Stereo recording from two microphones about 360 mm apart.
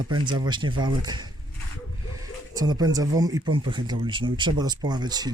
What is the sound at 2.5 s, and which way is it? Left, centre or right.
Speech, centre.